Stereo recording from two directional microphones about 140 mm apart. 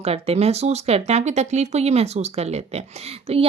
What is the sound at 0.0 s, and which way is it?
Speech, 50° right (ahead or behind).